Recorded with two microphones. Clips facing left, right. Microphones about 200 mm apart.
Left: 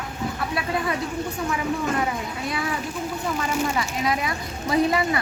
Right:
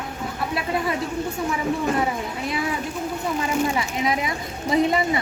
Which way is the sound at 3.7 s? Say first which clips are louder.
Right 1 dB; 20° right (ahead or behind).